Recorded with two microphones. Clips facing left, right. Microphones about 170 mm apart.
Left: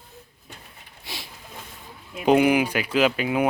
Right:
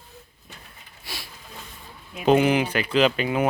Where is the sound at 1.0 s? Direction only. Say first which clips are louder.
Even; 20° left (ahead or behind).